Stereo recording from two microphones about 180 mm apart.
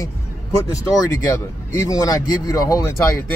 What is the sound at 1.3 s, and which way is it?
Speech, 15° left (ahead or behind).